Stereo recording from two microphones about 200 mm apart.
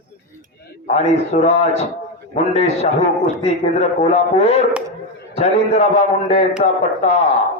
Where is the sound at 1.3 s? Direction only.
35° left (ahead or behind).